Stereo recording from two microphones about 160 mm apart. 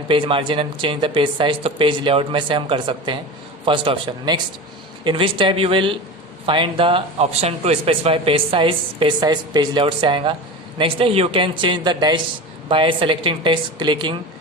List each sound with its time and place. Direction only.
0.1 s a man's voice: 35° right (ahead or behind)